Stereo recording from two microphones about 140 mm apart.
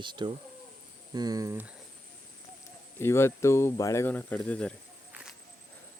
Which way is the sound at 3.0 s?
20° left (ahead or behind).